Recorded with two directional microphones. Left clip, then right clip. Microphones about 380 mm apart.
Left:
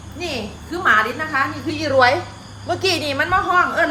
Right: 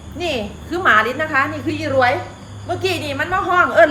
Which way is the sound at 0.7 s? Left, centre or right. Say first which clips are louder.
Right 2 dB; centre.